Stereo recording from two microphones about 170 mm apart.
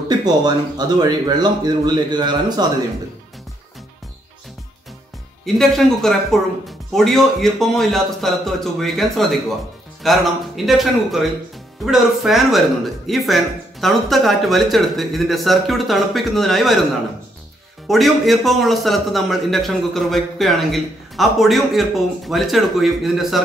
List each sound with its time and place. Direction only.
0.2 s speech: 25° right (ahead or behind)
5.4 s a man's voice: centre (ahead or behind)
17.8 s a man's voice: centre (ahead or behind)